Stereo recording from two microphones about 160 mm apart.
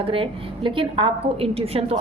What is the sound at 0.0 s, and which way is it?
A woman's voice, 35° right (ahead or behind).